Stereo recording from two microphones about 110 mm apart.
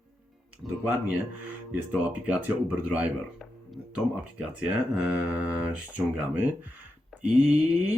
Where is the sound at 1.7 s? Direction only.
15° right (ahead or behind).